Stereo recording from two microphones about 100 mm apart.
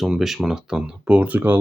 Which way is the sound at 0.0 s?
5° right (ahead or behind).